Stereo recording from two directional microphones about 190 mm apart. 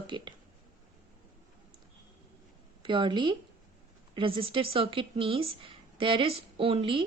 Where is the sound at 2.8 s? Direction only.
25° right (ahead or behind).